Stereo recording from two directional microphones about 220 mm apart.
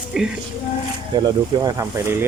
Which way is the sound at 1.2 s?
20° right (ahead or behind).